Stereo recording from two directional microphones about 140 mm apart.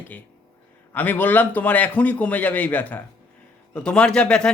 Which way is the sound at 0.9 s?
10° left (ahead or behind).